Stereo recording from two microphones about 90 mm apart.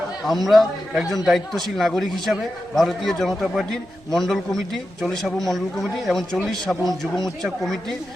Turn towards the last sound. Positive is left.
turn(degrees=5)  # may be behind; listen again after turning